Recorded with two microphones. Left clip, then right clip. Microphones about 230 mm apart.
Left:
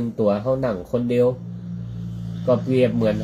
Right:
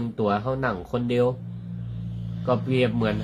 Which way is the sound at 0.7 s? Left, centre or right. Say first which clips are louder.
Left 4 dB; centre.